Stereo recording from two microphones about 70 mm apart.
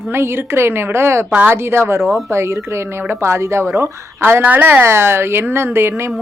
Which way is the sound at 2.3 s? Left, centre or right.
Right.